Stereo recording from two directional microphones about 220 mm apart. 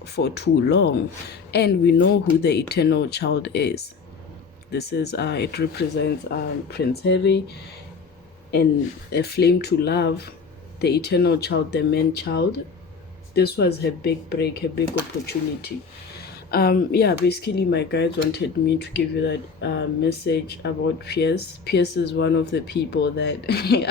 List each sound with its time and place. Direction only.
0.0 s speech: 50° left (ahead or behind)
9.0 s speech: 45° left (ahead or behind)
16.5 s speech: 45° left (ahead or behind)